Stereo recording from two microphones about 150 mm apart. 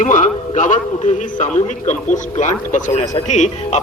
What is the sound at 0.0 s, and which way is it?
A man's voice, 55° left (ahead or behind).